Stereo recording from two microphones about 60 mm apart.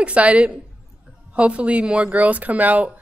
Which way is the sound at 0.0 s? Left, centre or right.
Centre.